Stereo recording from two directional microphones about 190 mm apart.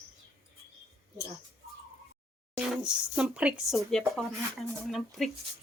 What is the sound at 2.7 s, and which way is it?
Stir, 5° right (ahead or behind).